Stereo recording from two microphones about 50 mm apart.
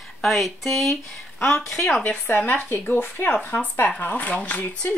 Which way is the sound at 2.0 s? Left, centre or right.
Left.